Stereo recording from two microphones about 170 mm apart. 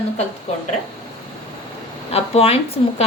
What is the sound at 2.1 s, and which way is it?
Speech, 35° left (ahead or behind).